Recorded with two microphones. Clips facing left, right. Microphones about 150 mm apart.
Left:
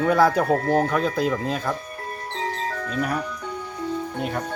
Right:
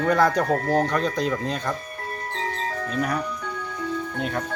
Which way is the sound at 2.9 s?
Centre (ahead or behind).